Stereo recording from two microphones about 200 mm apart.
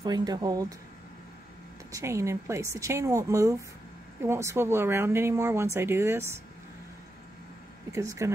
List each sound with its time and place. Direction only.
0.0 s speech: 20° right (ahead or behind)
1.9 s speech: 15° right (ahead or behind)
7.9 s speech: 15° right (ahead or behind)